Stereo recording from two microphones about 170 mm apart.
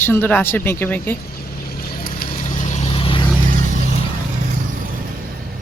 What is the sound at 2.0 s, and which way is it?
Vehicle, 55° left (ahead or behind).